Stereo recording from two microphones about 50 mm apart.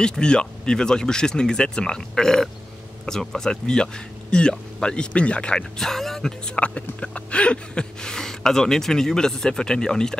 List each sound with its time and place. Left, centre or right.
0.2 s speech: centre
5.8 s speech: centre